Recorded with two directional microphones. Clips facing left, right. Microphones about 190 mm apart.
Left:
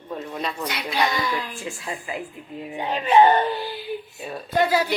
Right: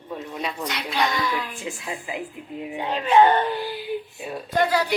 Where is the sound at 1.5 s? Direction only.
20° right (ahead or behind).